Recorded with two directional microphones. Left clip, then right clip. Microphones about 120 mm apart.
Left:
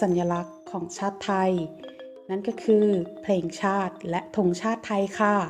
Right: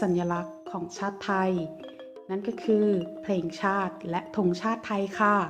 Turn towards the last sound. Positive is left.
turn(degrees=40)  # may be behind; listen again after turning